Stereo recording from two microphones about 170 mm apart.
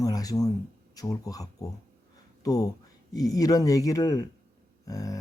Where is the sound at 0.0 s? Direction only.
20° left (ahead or behind).